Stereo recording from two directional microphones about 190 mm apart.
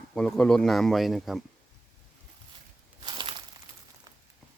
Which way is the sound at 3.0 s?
25° right (ahead or behind).